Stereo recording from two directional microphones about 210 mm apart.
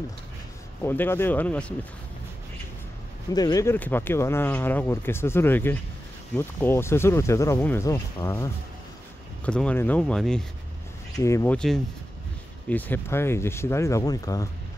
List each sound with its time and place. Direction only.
0.8 s speech: 10° left (ahead or behind)
3.3 s speech: 15° left (ahead or behind)
9.5 s speech: 5° left (ahead or behind)
11.1 s speech: 15° left (ahead or behind)